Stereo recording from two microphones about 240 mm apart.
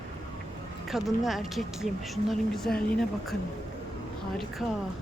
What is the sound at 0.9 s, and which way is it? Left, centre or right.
Speech, centre.